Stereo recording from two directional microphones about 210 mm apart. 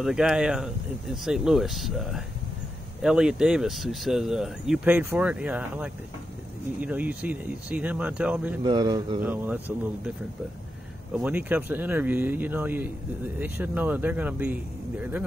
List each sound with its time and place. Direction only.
0.0 s speech: 5° right (ahead or behind)
8.6 s speech: 20° right (ahead or behind)
9.2 s speech: 10° right (ahead or behind)
11.1 s speech: 5° right (ahead or behind)